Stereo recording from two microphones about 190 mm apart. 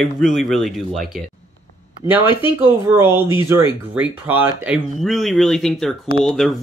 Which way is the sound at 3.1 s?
25° left (ahead or behind).